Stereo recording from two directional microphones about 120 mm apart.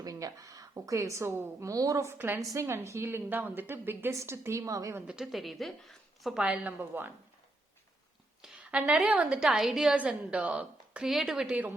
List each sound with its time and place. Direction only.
0.0 s speech: 30° right (ahead or behind)
5.0 s a woman's voice: 5° right (ahead or behind)
8.4 s a woman's voice: 10° right (ahead or behind)